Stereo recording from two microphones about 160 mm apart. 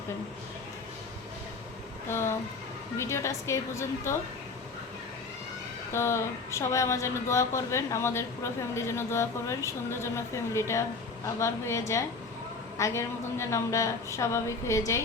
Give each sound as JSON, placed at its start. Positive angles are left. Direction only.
{"t": 2.0, "sound": "speech", "side_deg": 15}
{"t": 5.9, "sound": "a woman's voice", "side_deg": 15}